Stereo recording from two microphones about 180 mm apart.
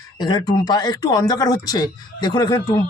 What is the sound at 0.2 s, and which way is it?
Speech, 20° left (ahead or behind).